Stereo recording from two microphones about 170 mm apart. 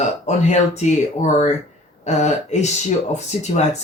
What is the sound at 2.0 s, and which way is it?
Speech, 45° left (ahead or behind).